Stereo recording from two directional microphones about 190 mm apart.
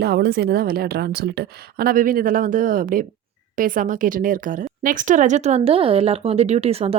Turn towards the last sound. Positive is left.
turn(degrees=-30)  # may be behind; listen again after turning